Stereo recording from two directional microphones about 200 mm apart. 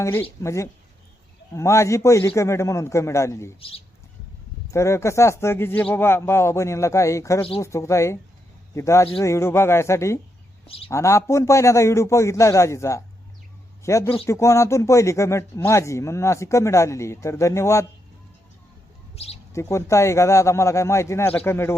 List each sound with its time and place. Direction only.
0.0 s speech: 10° left (ahead or behind)
3.6 s speech: 30° left (ahead or behind)
4.7 s speech: 15° left (ahead or behind)
19.1 s speech: 30° left (ahead or behind)
19.5 s speech: 15° left (ahead or behind)